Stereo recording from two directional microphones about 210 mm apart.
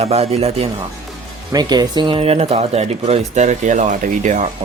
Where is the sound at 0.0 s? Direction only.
30° right (ahead or behind).